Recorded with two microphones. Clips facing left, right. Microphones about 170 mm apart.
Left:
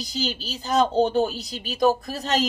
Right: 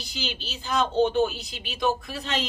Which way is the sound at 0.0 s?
40° left (ahead or behind).